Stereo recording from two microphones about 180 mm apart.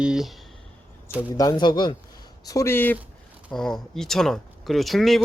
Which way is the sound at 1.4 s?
25° left (ahead or behind).